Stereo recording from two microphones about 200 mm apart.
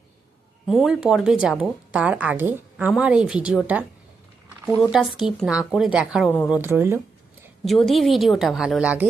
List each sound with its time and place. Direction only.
0.7 s speech: centre (ahead or behind)
7.6 s speech: centre (ahead or behind)